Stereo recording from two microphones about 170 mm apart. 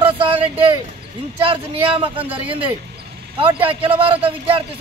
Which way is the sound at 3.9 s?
30° right (ahead or behind).